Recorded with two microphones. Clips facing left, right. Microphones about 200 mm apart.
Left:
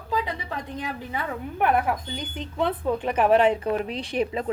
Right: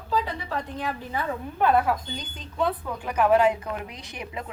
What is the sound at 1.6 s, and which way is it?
A woman's voice, 20° left (ahead or behind).